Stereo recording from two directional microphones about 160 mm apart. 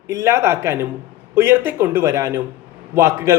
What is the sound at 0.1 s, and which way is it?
A man's voice, 20° right (ahead or behind).